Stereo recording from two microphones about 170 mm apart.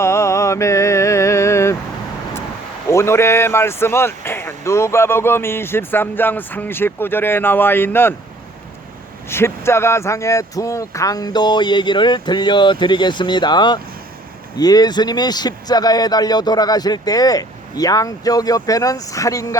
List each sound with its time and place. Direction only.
0.0 s a sound: 15° left (ahead or behind)
2.9 s speech: 15° left (ahead or behind)
9.3 s a man's voice: 15° left (ahead or behind)